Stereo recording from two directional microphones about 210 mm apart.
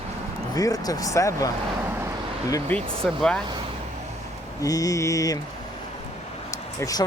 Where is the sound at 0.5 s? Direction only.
15° left (ahead or behind).